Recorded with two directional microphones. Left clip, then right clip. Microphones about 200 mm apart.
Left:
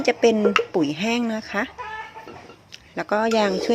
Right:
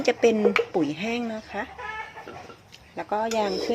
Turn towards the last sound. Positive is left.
turn(degrees=35)  # may be behind; listen again after turning